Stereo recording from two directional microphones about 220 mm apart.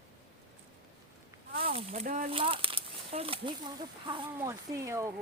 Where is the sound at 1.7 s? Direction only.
35° right (ahead or behind).